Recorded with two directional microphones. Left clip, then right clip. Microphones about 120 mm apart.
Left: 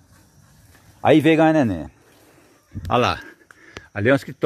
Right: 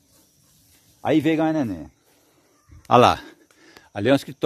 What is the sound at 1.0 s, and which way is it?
Speech, 20° left (ahead or behind).